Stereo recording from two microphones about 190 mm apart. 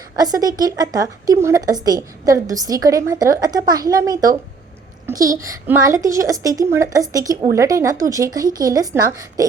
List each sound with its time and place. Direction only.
0.2 s a child's voice: 20° right (ahead or behind)